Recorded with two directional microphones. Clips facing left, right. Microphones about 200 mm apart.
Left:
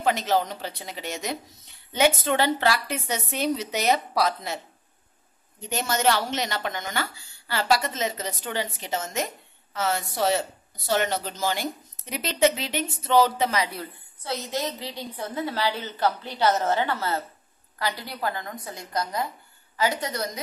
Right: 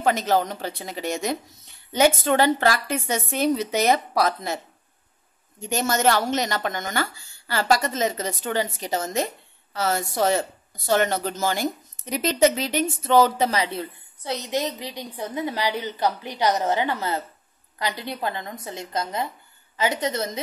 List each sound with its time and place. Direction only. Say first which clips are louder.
0.0 s speech: right 2 dB; 45° right (ahead or behind)
5.7 s speech: right 3 dB; 45° right (ahead or behind)
13.5 s a woman's voice: right 2 dB; 25° right (ahead or behind)